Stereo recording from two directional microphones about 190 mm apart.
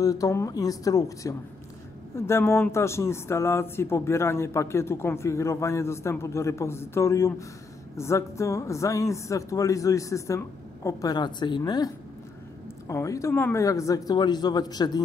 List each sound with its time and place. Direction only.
0.0 s speech: 15° left (ahead or behind)